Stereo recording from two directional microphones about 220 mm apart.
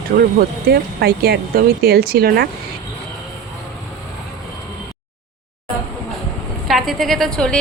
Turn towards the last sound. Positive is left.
turn(degrees=5)  # may be behind; listen again after turning